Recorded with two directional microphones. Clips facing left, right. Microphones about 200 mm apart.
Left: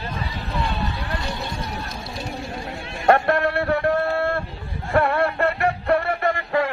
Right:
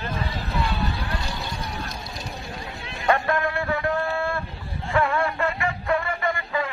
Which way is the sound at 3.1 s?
65° left (ahead or behind).